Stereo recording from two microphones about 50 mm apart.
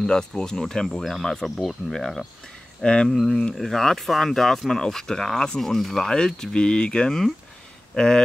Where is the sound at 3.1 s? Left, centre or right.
Centre.